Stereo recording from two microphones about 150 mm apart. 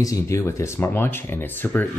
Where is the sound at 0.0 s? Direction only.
20° left (ahead or behind).